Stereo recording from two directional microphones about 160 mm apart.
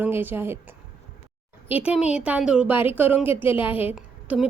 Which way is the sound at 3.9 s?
10° right (ahead or behind).